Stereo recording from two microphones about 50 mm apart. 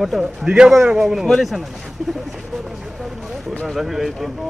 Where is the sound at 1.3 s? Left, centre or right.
Centre.